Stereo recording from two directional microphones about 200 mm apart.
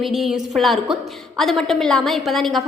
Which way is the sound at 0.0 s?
Centre (ahead or behind).